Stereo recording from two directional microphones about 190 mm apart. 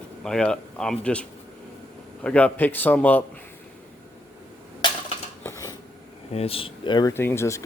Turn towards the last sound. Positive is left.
turn(degrees=15)  # may be behind; listen again after turning